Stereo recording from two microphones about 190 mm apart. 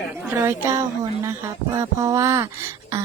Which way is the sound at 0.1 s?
15° right (ahead or behind).